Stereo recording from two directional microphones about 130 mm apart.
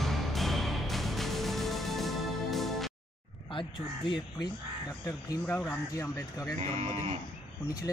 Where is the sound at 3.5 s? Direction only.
40° left (ahead or behind).